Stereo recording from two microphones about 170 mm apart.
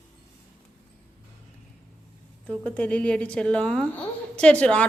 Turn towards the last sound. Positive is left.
turn(degrees=5)  # may be behind; listen again after turning